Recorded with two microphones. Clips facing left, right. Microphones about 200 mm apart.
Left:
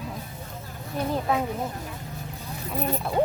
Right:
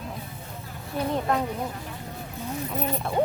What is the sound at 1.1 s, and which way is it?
Speech, 5° left (ahead or behind).